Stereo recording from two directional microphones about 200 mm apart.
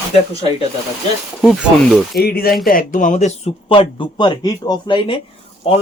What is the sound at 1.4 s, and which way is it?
Speech, 5° right (ahead or behind).